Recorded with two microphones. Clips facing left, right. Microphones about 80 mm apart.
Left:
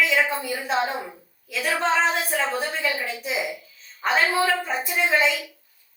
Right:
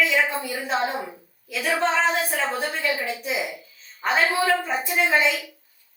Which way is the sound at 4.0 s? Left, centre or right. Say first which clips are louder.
Even; centre.